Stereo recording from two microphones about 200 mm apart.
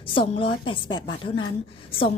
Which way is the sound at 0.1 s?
25° left (ahead or behind).